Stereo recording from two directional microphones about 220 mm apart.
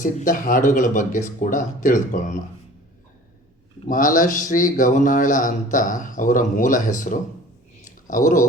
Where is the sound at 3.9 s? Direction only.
35° left (ahead or behind).